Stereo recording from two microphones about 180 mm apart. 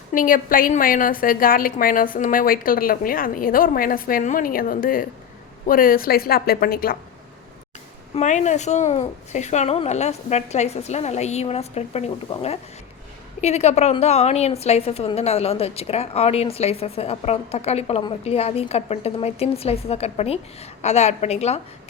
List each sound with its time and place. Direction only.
0.1 s a woman's voice: 50° left (ahead or behind)
8.1 s a woman's voice: 40° left (ahead or behind)